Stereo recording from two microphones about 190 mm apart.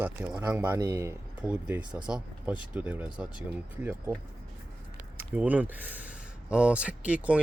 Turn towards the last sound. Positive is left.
turn(degrees=-5)  # may be behind; listen again after turning